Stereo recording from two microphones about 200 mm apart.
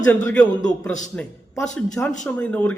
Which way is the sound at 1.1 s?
5° left (ahead or behind).